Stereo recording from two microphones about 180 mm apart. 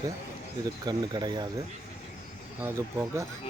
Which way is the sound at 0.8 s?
20° right (ahead or behind).